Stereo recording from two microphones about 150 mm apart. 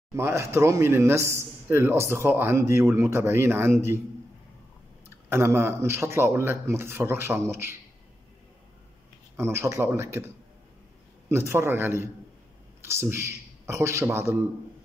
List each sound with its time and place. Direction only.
0.1 s a man's voice: 20° right (ahead or behind)
5.3 s a man's voice: 15° right (ahead or behind)
9.4 s a man's voice: 15° right (ahead or behind)